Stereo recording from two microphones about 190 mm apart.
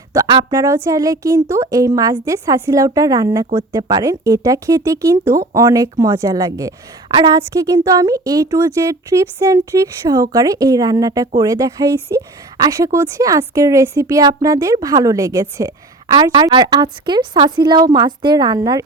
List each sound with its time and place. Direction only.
0.1 s a woman's voice: 20° right (ahead or behind)